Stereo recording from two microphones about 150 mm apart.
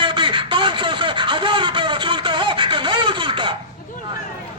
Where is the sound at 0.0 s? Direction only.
35° right (ahead or behind).